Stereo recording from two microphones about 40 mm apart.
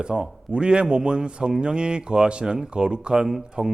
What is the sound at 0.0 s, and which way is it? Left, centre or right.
A man's voice, right.